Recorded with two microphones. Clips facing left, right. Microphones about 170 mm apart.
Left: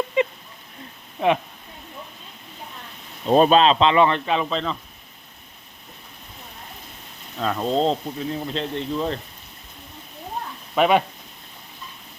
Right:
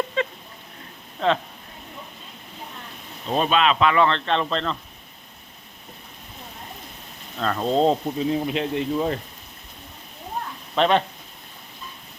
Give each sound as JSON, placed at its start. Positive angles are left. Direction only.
{"t": 0.2, "sound": "a sound", "side_deg": 15}
{"t": 1.2, "sound": "speech", "side_deg": 10}
{"t": 3.2, "sound": "speech", "side_deg": 40}
{"t": 7.3, "sound": "speech", "side_deg": 5}
{"t": 8.0, "sound": "speech", "side_deg": -15}
{"t": 10.8, "sound": "speech", "side_deg": 10}